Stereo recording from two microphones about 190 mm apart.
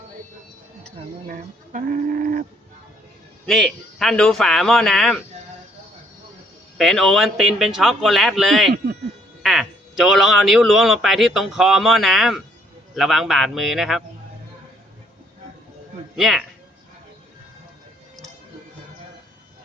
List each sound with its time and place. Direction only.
1.3 s speech: 45° right (ahead or behind)
3.4 s a man's voice: centre (ahead or behind)
6.7 s a man's voice: centre (ahead or behind)
16.1 s a man's voice: centre (ahead or behind)